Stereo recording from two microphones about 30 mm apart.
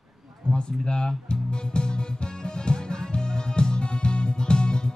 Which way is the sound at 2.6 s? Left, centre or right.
Left.